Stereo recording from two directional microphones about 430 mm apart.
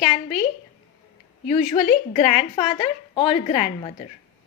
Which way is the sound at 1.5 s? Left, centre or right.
Centre.